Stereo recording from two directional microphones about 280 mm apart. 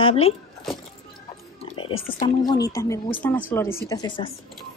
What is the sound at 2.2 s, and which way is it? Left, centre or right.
Speech, centre.